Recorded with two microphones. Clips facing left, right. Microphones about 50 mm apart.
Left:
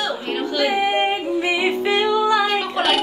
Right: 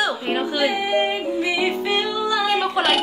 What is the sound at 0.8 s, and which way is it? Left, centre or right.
Female singing, left.